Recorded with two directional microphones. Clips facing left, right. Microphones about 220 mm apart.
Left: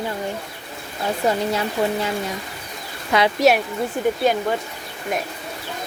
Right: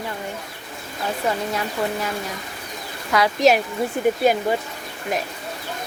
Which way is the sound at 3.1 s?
25° left (ahead or behind).